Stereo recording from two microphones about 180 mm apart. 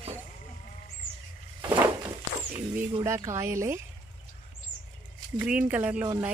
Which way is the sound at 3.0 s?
15° right (ahead or behind).